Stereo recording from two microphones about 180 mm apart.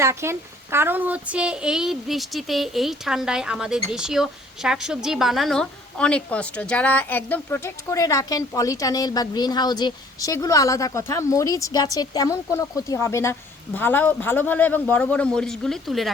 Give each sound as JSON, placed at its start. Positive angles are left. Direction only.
{"t": 0.0, "sound": "a child's voice", "side_deg": -15}